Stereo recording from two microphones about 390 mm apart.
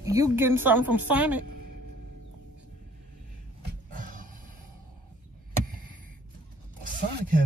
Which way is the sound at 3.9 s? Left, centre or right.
Right.